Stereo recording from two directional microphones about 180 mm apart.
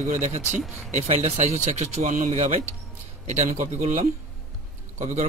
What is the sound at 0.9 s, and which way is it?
Speech, 35° right (ahead or behind).